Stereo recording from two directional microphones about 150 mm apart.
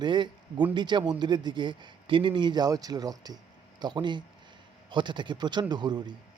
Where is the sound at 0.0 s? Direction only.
30° right (ahead or behind).